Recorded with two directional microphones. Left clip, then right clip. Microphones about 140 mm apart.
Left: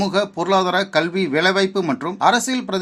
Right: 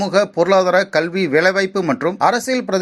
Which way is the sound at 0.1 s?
20° right (ahead or behind).